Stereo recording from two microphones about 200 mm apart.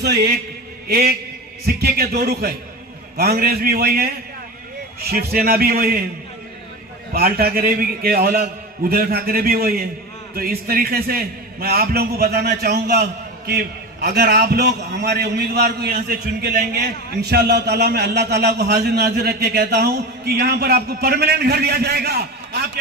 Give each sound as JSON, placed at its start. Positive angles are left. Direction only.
{"t": 0.0, "sound": "a man's voice", "side_deg": -55}
{"t": 7.1, "sound": "a man's voice", "side_deg": -50}